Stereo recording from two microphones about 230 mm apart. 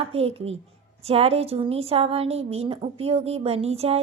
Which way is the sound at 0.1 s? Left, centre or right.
Right.